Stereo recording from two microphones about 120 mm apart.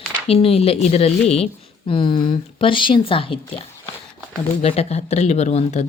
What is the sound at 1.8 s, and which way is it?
Speech, 45° left (ahead or behind).